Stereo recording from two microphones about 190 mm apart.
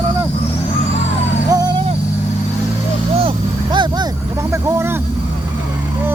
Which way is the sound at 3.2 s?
25° right (ahead or behind).